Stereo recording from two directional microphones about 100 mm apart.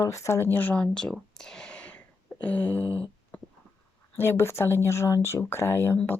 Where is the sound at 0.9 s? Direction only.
5° left (ahead or behind).